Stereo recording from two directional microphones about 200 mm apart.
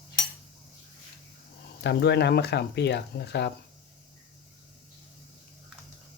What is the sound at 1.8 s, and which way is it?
Speech, 55° left (ahead or behind).